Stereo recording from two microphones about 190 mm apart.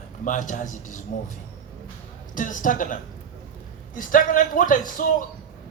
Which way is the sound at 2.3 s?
45° left (ahead or behind).